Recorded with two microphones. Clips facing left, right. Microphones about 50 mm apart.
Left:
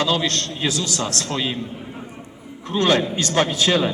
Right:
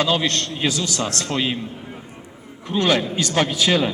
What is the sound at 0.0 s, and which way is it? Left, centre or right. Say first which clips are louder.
A man's voice: right 1 dB; right.